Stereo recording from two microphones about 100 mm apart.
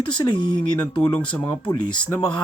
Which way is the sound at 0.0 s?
50° left (ahead or behind).